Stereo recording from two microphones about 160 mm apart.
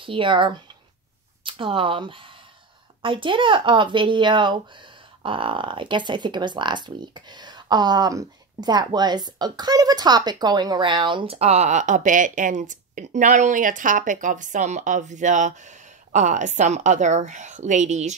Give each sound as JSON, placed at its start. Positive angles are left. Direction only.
{"t": 0.0, "sound": "speech", "side_deg": -30}